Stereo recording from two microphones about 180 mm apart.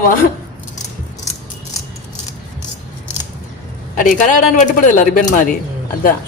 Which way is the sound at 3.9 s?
45° left (ahead or behind).